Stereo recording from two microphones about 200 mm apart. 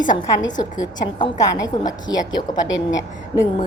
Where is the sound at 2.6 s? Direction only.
70° left (ahead or behind).